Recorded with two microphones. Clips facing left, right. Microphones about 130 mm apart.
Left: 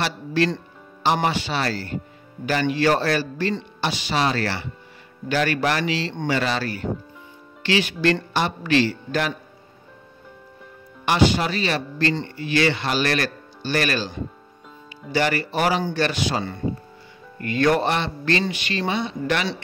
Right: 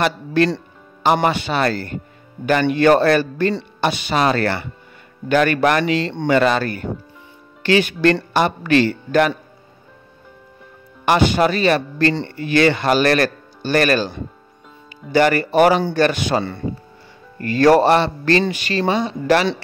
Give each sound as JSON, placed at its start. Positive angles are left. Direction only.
{"t": 0.0, "sound": "a man's voice", "side_deg": -50}
{"t": 11.1, "sound": "speech", "side_deg": -50}
{"t": 17.4, "sound": "a man's voice", "side_deg": -40}